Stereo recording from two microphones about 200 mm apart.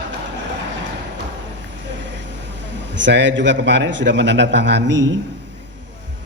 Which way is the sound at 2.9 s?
65° right (ahead or behind).